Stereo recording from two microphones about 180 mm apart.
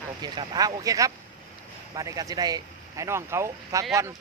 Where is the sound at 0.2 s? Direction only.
20° right (ahead or behind).